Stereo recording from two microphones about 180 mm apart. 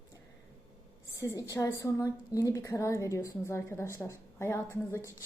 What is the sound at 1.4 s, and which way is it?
A woman's voice, 20° left (ahead or behind).